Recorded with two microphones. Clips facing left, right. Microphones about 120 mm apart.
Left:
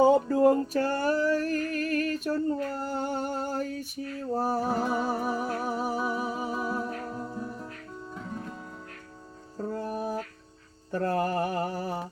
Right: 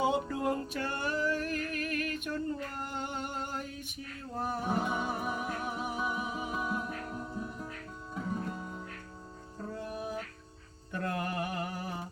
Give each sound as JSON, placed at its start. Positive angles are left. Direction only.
{"t": 0.0, "sound": "music", "side_deg": 35}
{"t": 7.3, "sound": "music", "side_deg": -5}
{"t": 9.6, "sound": "music", "side_deg": 40}
{"t": 10.9, "sound": "mantra", "side_deg": 35}